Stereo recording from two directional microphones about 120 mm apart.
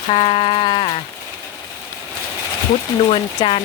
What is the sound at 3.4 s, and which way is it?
Speech, 35° left (ahead or behind).